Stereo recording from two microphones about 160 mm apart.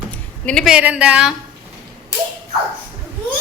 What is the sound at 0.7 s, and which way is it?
Speech, 10° right (ahead or behind).